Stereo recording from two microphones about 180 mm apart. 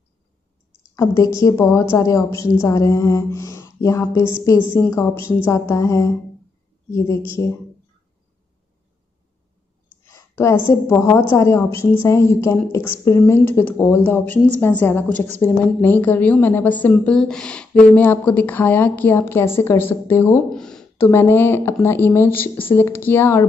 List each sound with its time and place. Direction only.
0.9 s a woman's voice: 20° left (ahead or behind)
10.1 s a sound: 15° left (ahead or behind)
10.7 s a woman's voice: 15° left (ahead or behind)
20.4 s a woman's voice: 5° left (ahead or behind)